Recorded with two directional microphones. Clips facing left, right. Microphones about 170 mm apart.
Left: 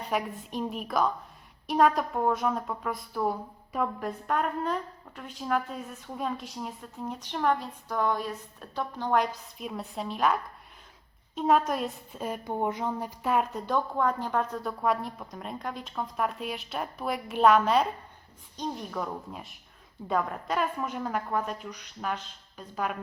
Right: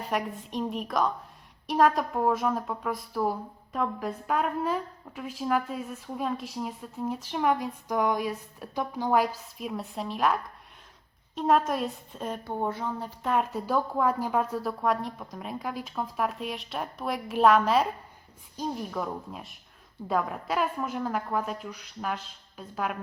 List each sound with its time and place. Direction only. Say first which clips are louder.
0.1 s a woman's voice: even; centre (ahead or behind)
13.3 s a woman's voice: right 1 dB; centre (ahead or behind)